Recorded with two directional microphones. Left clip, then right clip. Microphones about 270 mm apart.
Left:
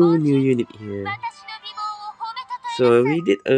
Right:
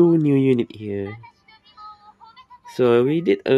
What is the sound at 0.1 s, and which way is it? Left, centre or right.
Speech, centre.